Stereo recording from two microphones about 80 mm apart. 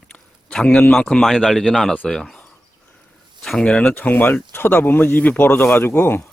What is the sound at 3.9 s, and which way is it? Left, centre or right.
Speech, left.